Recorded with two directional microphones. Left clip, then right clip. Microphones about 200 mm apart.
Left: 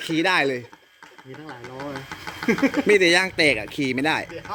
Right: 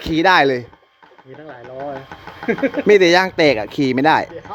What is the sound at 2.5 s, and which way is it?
Speech, 45° left (ahead or behind).